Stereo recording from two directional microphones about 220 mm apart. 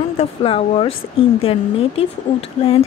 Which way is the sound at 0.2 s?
25° left (ahead or behind).